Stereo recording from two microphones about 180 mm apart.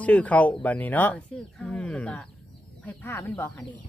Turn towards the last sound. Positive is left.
turn(degrees=10)  # may be behind; listen again after turning